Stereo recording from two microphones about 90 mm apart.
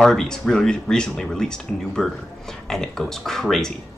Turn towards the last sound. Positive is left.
turn(degrees=5)  # may be behind; listen again after turning